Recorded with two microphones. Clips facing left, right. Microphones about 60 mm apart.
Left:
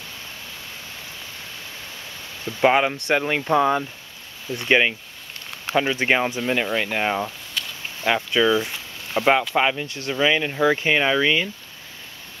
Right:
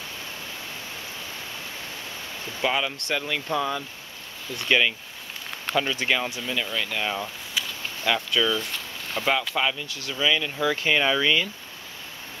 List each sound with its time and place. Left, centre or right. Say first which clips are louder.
2.6 s speech: left 8 dB; left
7.6 s a sound: even; centre
8.0 s speech: left 4 dB; left
9.6 s speech: left 5 dB; left